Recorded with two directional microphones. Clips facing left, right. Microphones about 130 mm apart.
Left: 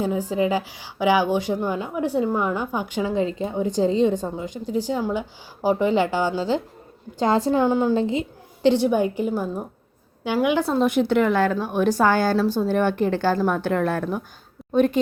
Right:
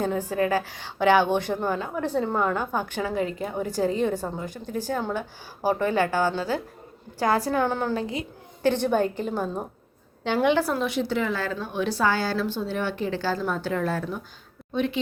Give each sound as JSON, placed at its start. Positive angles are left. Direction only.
{"t": 0.0, "sound": "a woman's voice", "side_deg": 10}
{"t": 7.9, "sound": "a woman's voice", "side_deg": 25}
{"t": 8.6, "sound": "a woman's voice", "side_deg": 15}
{"t": 10.6, "sound": "a woman's voice", "side_deg": 25}
{"t": 10.8, "sound": "a woman's voice", "side_deg": 55}
{"t": 14.7, "sound": "a woman's voice", "side_deg": 45}